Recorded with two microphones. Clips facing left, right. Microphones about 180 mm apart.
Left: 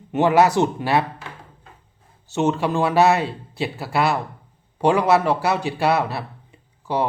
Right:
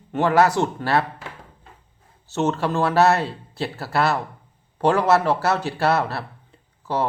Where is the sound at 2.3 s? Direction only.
15° left (ahead or behind).